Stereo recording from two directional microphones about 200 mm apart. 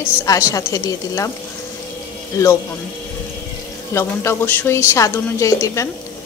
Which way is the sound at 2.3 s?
15° left (ahead or behind).